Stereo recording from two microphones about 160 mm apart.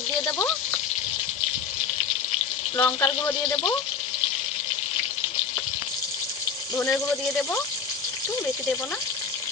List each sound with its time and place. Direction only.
0.3 s speech: 15° left (ahead or behind)
2.7 s speech: 15° left (ahead or behind)